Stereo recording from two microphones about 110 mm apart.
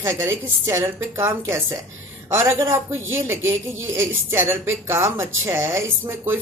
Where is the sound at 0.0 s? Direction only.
25° right (ahead or behind).